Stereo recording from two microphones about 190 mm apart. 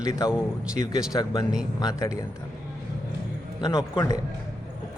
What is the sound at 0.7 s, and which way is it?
Speech, 40° right (ahead or behind).